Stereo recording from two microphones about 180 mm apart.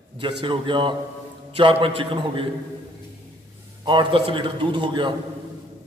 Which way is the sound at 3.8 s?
25° right (ahead or behind).